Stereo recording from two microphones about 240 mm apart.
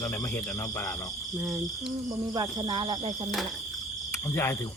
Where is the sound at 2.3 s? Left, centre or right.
Centre.